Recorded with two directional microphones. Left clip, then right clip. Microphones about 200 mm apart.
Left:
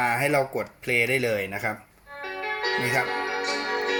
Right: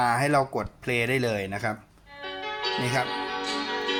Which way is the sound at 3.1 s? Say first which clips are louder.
Left 3 dB; 30° right (ahead or behind).